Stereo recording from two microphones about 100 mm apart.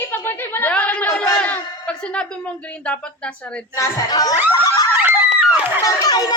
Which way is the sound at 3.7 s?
35° left (ahead or behind).